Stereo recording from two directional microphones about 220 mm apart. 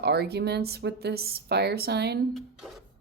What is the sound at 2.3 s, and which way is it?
Speech, centre (ahead or behind).